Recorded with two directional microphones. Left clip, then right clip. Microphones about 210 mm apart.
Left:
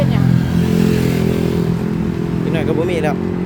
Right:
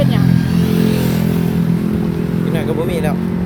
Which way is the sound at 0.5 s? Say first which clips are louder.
Left 2 dB; 35° left (ahead or behind).